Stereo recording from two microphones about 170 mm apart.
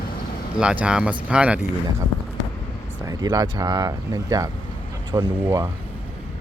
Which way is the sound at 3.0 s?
20° right (ahead or behind).